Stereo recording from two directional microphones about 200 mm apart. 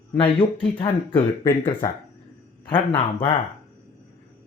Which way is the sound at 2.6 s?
25° left (ahead or behind).